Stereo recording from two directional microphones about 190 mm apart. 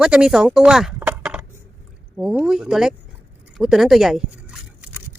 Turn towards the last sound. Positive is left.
turn(degrees=0)  # may be behind; listen again after turning